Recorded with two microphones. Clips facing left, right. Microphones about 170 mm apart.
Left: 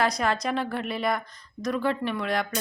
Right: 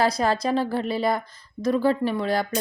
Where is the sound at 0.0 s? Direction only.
30° right (ahead or behind).